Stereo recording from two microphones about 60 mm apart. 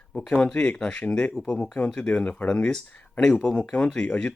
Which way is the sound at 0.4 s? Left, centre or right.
Centre.